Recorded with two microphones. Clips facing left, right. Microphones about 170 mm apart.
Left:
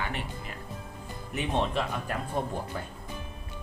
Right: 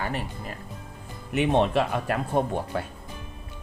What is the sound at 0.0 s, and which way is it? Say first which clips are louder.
Music: right 4 dB; 40° right (ahead or behind).